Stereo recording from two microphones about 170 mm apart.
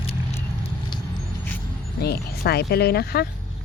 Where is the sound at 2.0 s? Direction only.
70° left (ahead or behind).